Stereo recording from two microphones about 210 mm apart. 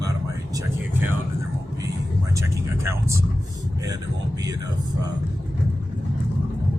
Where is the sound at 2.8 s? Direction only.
15° right (ahead or behind).